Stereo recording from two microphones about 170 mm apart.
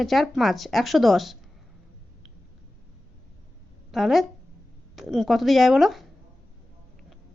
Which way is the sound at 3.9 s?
Centre (ahead or behind).